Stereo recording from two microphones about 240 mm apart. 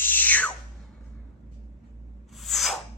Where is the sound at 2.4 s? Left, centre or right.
Centre.